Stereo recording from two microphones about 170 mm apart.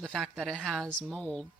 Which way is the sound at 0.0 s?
Centre (ahead or behind).